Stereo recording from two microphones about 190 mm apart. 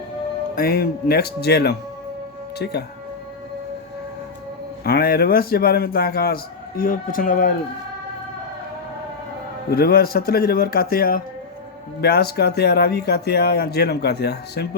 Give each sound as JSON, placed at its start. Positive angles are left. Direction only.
{"t": 0.5, "sound": "speech", "side_deg": 55}
{"t": 4.8, "sound": "a man's voice", "side_deg": 55}
{"t": 9.7, "sound": "a man's voice", "side_deg": 55}